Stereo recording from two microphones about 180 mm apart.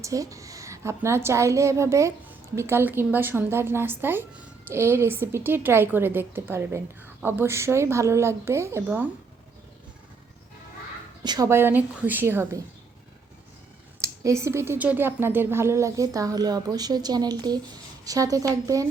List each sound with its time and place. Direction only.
0.0 s a woman's voice: 20° right (ahead or behind)
11.2 s a woman's voice: 20° right (ahead or behind)
14.0 s a woman's voice: 15° right (ahead or behind)